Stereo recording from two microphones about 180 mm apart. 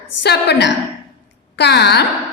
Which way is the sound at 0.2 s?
70° left (ahead or behind).